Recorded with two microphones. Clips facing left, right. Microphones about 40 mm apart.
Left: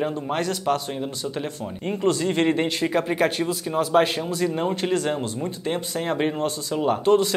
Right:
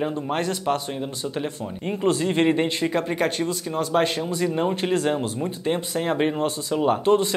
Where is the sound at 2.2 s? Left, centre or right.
Centre.